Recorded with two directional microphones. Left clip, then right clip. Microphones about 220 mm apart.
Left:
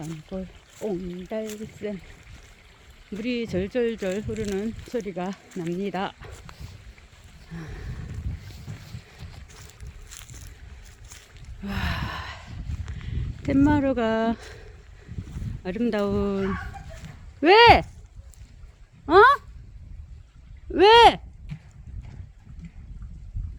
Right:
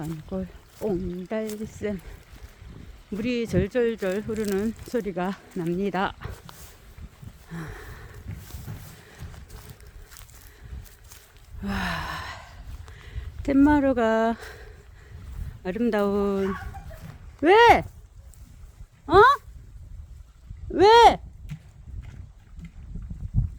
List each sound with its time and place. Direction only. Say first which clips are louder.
0.0 s speech: right 2 dB; 10° right (ahead or behind)
3.1 s speech: right 2 dB; 10° right (ahead or behind)
7.5 s a sound: right 2 dB; 10° right (ahead or behind)
10.1 s a sound: left 6 dB; centre (ahead or behind)
11.6 s gasp: right 2 dB; 10° right (ahead or behind)
13.0 s speech: left 4 dB; 10° right (ahead or behind)
17.4 s speech: left 2 dB; 5° left (ahead or behind)
19.0 s speech: left 1 dB; 5° left (ahead or behind)
20.7 s speech: left 1 dB; 5° left (ahead or behind)
21.5 s horse: even; 35° right (ahead or behind)